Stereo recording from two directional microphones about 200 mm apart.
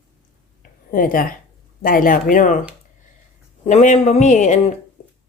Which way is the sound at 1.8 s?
45° left (ahead or behind).